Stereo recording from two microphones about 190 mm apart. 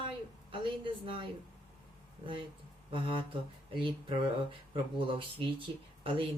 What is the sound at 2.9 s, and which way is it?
A woman's voice, 25° right (ahead or behind).